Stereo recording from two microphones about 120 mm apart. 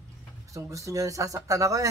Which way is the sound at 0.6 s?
25° right (ahead or behind).